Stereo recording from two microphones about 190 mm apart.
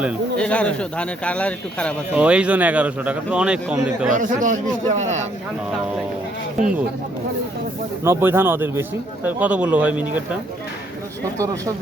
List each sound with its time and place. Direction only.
0.3 s speech: 5° left (ahead or behind)
2.1 s a man's voice: 5° right (ahead or behind)
4.9 s speech: 40° right (ahead or behind)
6.6 s speech: 5° right (ahead or behind)
8.0 s a man's voice: 10° right (ahead or behind)